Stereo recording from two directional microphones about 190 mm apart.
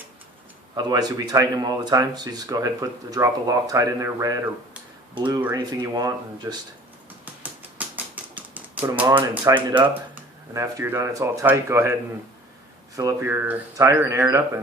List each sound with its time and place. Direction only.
0.8 s speech: 20° right (ahead or behind)
7.3 s typewriter: 10° right (ahead or behind)
9.3 s speech: 20° right (ahead or behind)
13.0 s speech: 15° right (ahead or behind)